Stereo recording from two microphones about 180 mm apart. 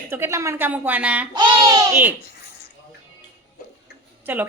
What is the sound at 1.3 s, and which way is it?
Speech, 20° right (ahead or behind).